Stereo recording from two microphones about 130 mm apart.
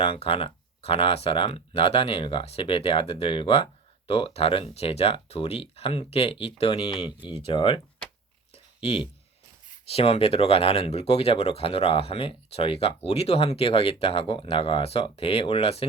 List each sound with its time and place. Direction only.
0.0 s speech: 45° left (ahead or behind)
8.5 s a sound: 50° left (ahead or behind)
9.9 s speech: 50° left (ahead or behind)